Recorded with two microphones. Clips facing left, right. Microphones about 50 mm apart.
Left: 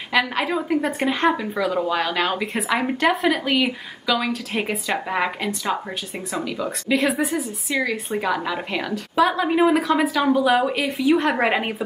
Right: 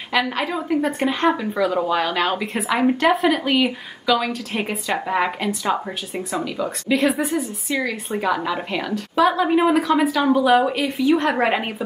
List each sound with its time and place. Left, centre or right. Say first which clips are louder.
0.1 s speech: left 1 dB; centre